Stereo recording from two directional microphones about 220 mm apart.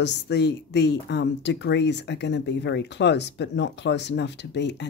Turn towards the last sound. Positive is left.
turn(degrees=50)  # may be behind; listen again after turning